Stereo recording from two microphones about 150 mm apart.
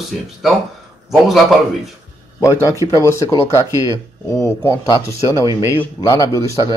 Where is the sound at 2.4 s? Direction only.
20° left (ahead or behind).